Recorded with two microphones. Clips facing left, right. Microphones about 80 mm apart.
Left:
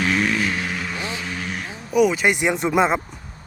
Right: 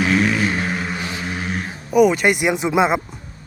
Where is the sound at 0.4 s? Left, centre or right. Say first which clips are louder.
Right 4 dB; right.